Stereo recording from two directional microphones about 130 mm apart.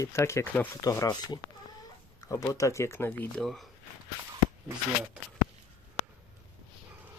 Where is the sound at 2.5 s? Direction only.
25° left (ahead or behind).